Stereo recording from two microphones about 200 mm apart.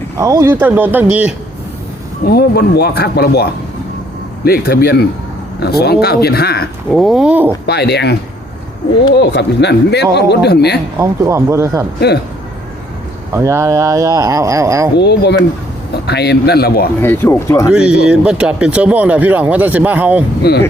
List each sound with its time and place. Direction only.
0.2 s speech: 15° right (ahead or behind)
2.2 s speech: 50° left (ahead or behind)
6.9 s speech: centre (ahead or behind)
7.7 s speech: 55° left (ahead or behind)
9.1 s speech: 55° left (ahead or behind)
11.0 s speech: 15° right (ahead or behind)
11.9 s speech: 55° left (ahead or behind)
13.3 s speech: 15° right (ahead or behind)
14.9 s speech: 55° left (ahead or behind)
17.0 s speech: 10° left (ahead or behind)
17.7 s speech: 5° right (ahead or behind)
20.4 s speech: 50° left (ahead or behind)